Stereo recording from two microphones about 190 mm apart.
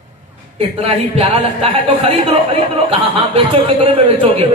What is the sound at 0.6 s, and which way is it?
A woman's voice, 30° right (ahead or behind).